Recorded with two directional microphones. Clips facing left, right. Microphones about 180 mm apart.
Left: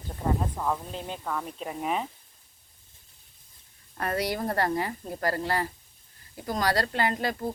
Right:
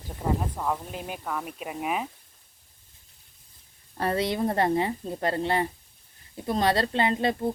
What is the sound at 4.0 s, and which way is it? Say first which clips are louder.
Speech: right 3 dB; 25° right (ahead or behind).